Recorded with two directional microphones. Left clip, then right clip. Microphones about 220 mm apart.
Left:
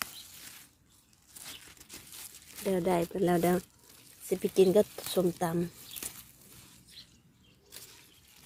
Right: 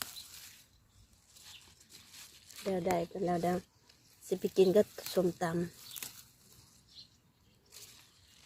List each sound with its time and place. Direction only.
2.7 s speech: 20° left (ahead or behind)
4.3 s speech: centre (ahead or behind)